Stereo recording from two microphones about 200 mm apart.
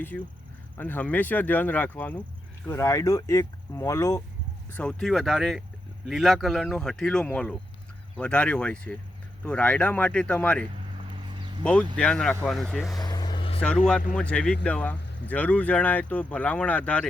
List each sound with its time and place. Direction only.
0.1 s speech: 10° left (ahead or behind)
13.0 s vehicle: 20° left (ahead or behind)
13.6 s speech: 5° left (ahead or behind)